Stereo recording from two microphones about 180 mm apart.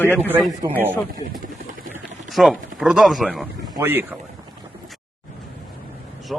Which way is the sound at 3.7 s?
10° right (ahead or behind).